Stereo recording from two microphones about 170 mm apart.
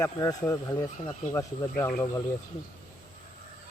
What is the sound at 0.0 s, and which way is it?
Speech, 20° left (ahead or behind).